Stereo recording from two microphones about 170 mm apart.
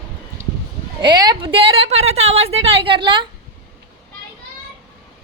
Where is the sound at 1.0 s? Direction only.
25° right (ahead or behind).